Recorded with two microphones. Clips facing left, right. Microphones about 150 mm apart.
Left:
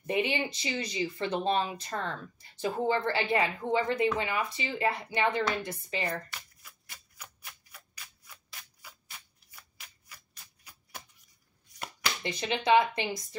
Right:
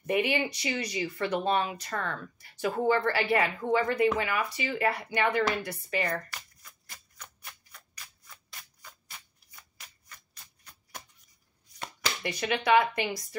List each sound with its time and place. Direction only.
0.0 s speech: 25° left (ahead or behind)
6.6 s a sound: 5° left (ahead or behind)
9.8 s shuffling cards: 10° left (ahead or behind)
12.2 s speech: 25° left (ahead or behind)